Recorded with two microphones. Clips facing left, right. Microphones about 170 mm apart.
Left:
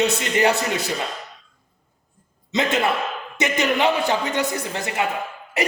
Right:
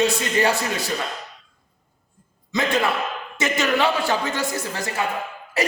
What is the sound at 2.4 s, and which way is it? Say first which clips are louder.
A man's voice: left 1 dB; 20° left (ahead or behind).